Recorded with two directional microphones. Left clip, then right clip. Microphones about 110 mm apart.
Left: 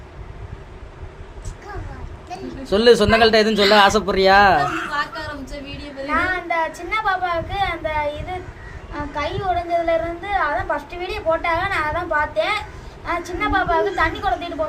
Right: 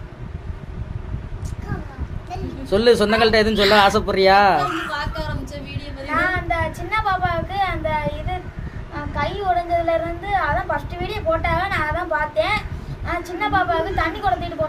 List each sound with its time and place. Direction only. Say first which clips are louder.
2.6 s a woman's voice: left 2 dB; 15° left (ahead or behind)
4.9 s a sound: left 2 dB; 25° right (ahead or behind)
6.1 s a woman's voice: even; 15° left (ahead or behind)
9.1 s a woman's voice: right 1 dB; 20° left (ahead or behind)